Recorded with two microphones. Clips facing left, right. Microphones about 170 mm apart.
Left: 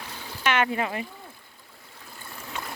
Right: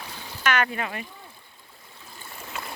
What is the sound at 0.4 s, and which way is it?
Speech, 20° left (ahead or behind).